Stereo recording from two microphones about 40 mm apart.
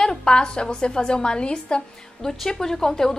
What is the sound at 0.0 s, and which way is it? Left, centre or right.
A woman's voice, centre.